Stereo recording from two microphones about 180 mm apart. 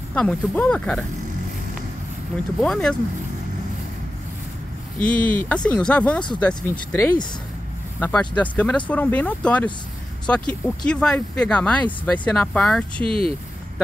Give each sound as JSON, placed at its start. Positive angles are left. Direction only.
{"t": 0.1, "sound": "speech", "side_deg": 5}
{"t": 2.6, "sound": "speech", "side_deg": 5}
{"t": 5.2, "sound": "speech", "side_deg": 10}
{"t": 13.0, "sound": "speech", "side_deg": -30}